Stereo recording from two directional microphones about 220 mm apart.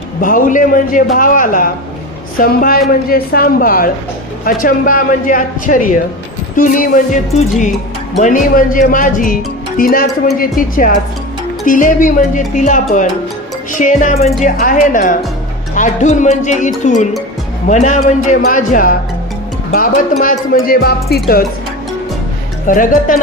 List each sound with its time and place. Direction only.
0.2 s speech: 40° left (ahead or behind)
11.6 s speech: 40° left (ahead or behind)
20.6 s music: 45° left (ahead or behind)
22.7 s speech: 40° left (ahead or behind)